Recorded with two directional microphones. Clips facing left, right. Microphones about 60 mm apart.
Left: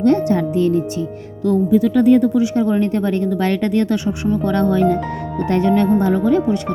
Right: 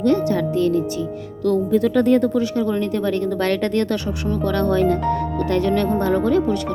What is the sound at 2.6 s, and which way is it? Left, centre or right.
Speech, left.